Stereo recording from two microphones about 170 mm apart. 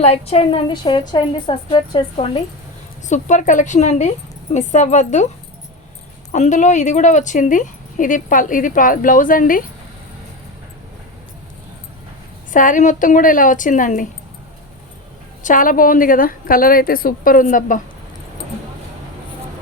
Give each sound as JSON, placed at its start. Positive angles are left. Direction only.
{"t": 0.0, "sound": "a woman's voice", "side_deg": 40}
{"t": 3.1, "sound": "speech", "side_deg": 45}
{"t": 6.3, "sound": "speech", "side_deg": 45}
{"t": 12.5, "sound": "speech", "side_deg": 50}
{"t": 15.4, "sound": "a woman's voice", "side_deg": 55}